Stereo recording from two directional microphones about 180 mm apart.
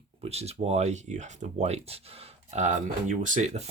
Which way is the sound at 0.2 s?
35° right (ahead or behind).